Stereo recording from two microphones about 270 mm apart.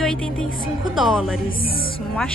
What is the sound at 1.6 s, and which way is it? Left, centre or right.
Speech, left.